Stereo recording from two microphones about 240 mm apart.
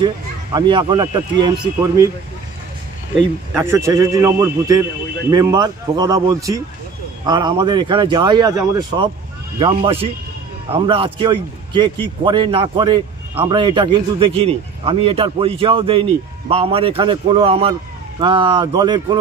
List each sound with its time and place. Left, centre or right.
0.0 s speech: centre
3.6 s a man's voice: centre